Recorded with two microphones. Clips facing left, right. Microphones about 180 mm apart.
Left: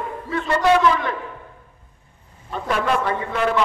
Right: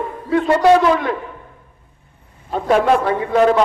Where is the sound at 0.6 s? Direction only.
35° right (ahead or behind).